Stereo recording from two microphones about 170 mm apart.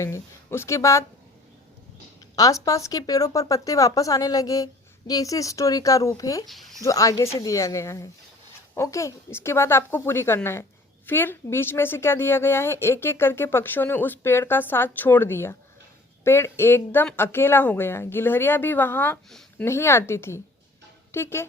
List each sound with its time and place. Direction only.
0.0 s a woman's voice: 15° left (ahead or behind)
2.3 s speech: 20° left (ahead or behind)
6.4 s speech: centre (ahead or behind)
6.8 s a woman's voice: 20° left (ahead or behind)